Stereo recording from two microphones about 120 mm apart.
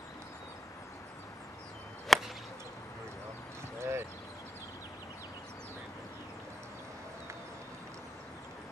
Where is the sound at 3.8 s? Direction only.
20° right (ahead or behind).